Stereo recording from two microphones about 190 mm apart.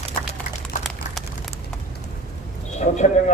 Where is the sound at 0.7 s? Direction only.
45° left (ahead or behind).